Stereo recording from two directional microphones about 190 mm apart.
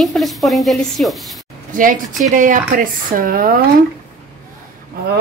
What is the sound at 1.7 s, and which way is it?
Speech, 45° right (ahead or behind).